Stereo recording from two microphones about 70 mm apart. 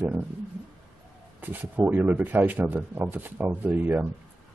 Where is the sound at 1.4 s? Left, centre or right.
Right.